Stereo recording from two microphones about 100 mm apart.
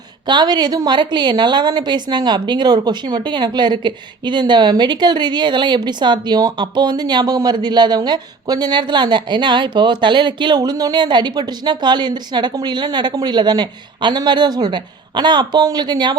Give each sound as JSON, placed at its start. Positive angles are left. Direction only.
{"t": 0.3, "sound": "speech", "side_deg": -45}